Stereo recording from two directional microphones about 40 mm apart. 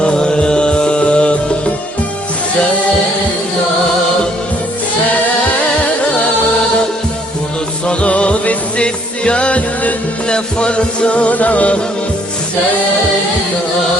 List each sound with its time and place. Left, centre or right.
0.0 s music: left
7.9 s music: left